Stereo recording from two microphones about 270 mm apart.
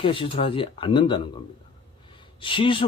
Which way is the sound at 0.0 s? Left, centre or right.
Centre.